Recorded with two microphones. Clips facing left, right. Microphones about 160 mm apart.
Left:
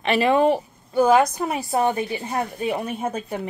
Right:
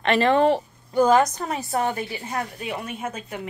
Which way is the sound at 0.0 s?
10° left (ahead or behind).